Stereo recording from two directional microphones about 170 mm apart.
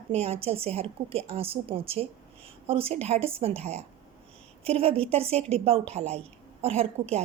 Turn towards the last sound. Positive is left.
turn(degrees=-35)  # may be behind; listen again after turning